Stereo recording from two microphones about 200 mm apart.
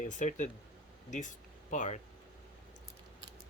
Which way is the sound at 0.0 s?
40° left (ahead or behind).